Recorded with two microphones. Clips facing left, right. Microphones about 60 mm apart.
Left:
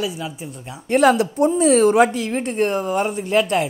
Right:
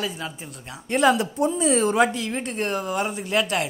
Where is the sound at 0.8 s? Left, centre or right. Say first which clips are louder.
Left 4 dB; left.